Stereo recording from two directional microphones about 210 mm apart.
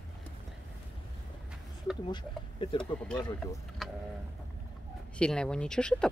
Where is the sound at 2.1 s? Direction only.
25° left (ahead or behind).